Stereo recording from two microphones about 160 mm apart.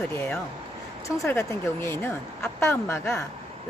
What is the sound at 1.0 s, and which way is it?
A woman's voice, 15° left (ahead or behind).